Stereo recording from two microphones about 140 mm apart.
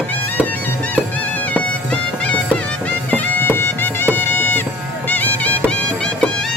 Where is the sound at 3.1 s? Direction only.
15° left (ahead or behind).